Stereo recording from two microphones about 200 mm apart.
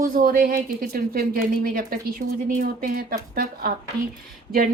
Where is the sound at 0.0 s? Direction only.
45° right (ahead or behind).